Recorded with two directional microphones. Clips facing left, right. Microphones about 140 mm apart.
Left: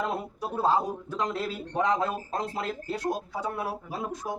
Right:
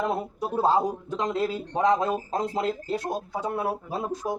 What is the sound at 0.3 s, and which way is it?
Speech, 20° right (ahead or behind).